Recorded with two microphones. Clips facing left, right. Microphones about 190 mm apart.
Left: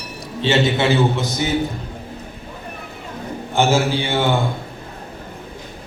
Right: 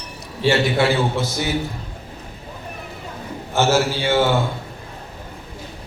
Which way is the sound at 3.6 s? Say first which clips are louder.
Left 1 dB; 15° left (ahead or behind).